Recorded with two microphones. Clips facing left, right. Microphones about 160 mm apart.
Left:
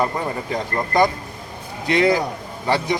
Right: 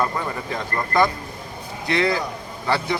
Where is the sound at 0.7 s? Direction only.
20° left (ahead or behind).